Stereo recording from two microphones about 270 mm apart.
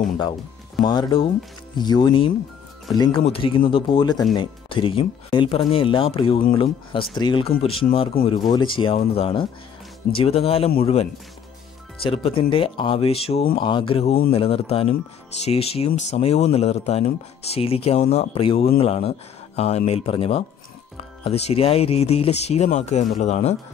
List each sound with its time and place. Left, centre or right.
0.8 s speech: centre